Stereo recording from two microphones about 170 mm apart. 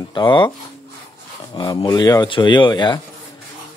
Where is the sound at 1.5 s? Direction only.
25° left (ahead or behind).